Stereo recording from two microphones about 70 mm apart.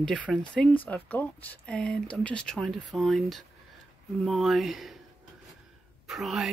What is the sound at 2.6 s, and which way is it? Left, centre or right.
Speech, centre.